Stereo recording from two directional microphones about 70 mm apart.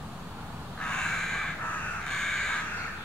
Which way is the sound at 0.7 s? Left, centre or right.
Centre.